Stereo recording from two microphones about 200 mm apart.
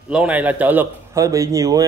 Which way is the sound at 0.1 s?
5° right (ahead or behind).